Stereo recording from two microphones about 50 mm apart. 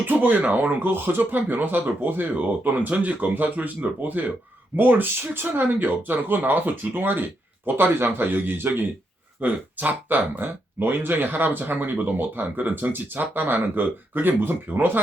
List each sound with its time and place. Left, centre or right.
0.0 s speech: right
9.4 s speech: right